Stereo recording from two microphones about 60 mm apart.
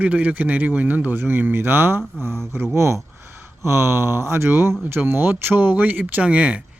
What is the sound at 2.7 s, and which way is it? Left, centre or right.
Speech, right.